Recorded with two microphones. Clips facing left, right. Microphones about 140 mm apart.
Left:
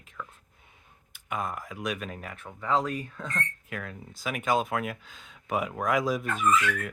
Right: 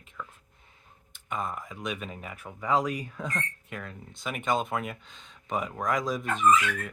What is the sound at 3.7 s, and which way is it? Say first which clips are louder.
Speech: left 1 dB; 5° left (ahead or behind).